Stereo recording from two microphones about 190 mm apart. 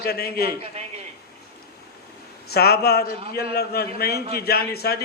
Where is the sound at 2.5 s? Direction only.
55° left (ahead or behind).